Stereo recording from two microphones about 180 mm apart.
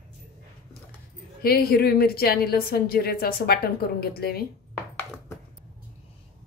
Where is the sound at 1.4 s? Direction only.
60° left (ahead or behind).